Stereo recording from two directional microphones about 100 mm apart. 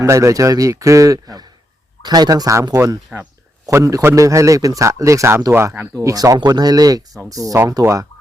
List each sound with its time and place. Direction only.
0.0 s a man's voice: 30° right (ahead or behind)
5.9 s a man's voice: 35° right (ahead or behind)